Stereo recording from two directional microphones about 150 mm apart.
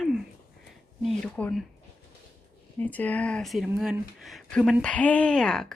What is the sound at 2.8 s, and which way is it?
A woman's voice, 10° left (ahead or behind).